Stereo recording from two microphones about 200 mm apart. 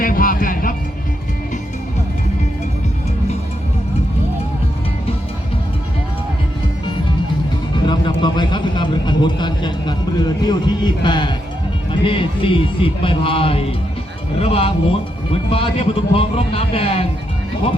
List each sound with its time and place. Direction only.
0.0 s music: 45° left (ahead or behind)
7.9 s a sound: 20° left (ahead or behind)
11.9 s speech: 25° left (ahead or behind)